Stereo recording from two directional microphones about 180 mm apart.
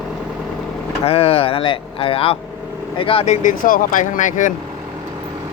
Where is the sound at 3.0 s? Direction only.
30° left (ahead or behind).